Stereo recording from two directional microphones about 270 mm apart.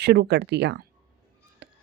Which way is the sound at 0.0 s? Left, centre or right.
Right.